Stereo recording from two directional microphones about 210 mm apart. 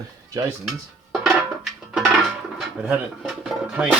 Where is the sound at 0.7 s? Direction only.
Centre (ahead or behind).